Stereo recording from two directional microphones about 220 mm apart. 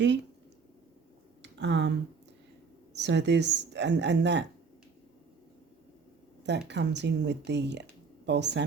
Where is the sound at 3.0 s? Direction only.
50° right (ahead or behind).